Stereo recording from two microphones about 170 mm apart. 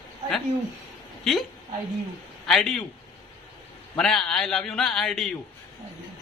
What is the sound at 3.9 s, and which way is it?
A man's voice, 5° left (ahead or behind).